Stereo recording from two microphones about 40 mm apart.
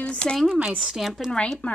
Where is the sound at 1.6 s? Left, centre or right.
Left.